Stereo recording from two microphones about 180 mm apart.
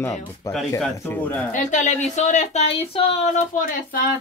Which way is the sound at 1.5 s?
40° left (ahead or behind).